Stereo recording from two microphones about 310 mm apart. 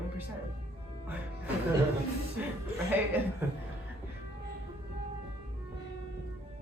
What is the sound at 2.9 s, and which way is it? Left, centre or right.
Speech, centre.